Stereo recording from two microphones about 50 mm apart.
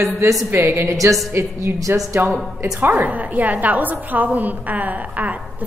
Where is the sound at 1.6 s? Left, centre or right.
Right.